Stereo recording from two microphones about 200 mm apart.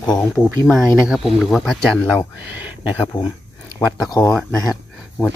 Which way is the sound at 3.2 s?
20° left (ahead or behind).